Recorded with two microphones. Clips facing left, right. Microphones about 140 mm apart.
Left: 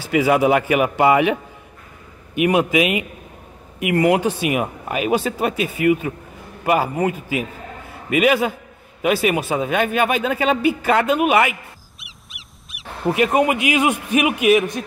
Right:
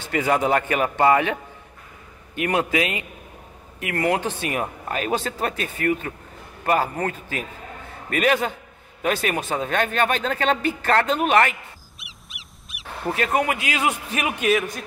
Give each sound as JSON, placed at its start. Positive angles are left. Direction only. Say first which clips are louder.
{"t": 0.0, "sound": "speech", "louder": "left 5 dB", "side_deg": 5}
{"t": 12.0, "sound": "a sound", "louder": "even", "side_deg": 0}
{"t": 13.0, "sound": "speech", "louder": "left 6 dB", "side_deg": 15}